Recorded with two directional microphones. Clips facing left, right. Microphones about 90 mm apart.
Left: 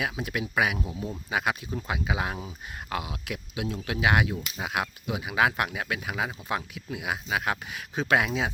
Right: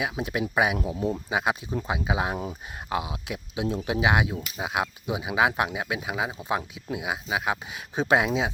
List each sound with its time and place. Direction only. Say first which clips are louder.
0.0 s speech: right 3 dB; 20° right (ahead or behind)